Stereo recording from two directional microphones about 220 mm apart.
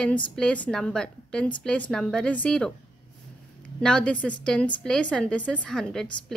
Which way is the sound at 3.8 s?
5° left (ahead or behind).